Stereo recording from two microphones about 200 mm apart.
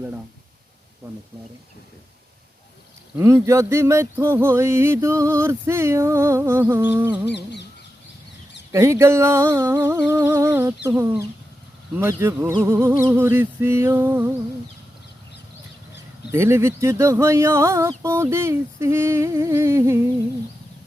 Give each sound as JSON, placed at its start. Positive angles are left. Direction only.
{"t": 3.2, "sound": "speech", "side_deg": -15}
{"t": 7.3, "sound": "a sound", "side_deg": 60}
{"t": 8.7, "sound": "speech", "side_deg": -15}
{"t": 16.3, "sound": "speech", "side_deg": -15}